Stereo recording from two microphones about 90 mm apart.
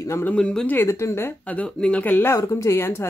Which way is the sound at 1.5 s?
15° left (ahead or behind).